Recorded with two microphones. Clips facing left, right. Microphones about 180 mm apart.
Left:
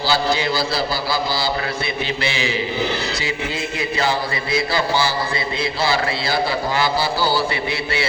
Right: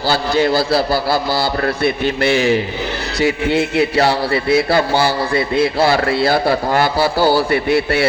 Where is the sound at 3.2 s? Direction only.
65° right (ahead or behind).